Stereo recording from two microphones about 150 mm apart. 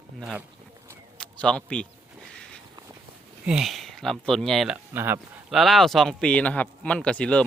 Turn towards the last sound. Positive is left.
turn(degrees=5)  # may be behind; listen again after turning